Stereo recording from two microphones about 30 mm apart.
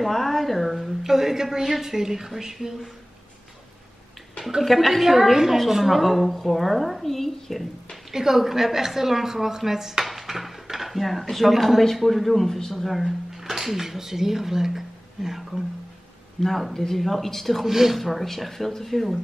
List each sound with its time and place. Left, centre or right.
0.0 s speech: centre
1.0 s a woman's voice: centre
4.7 s a woman's voice: centre
5.9 s speech: centre
8.1 s a woman's voice: centre
10.0 s dishes: centre
12.0 s speech: centre
12.4 s speech: centre
12.7 s speech: centre
16.3 s speech: centre
17.6 s a woman's voice: centre
17.9 s speech: centre